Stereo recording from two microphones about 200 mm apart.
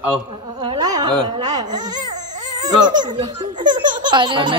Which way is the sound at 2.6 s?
20° right (ahead or behind).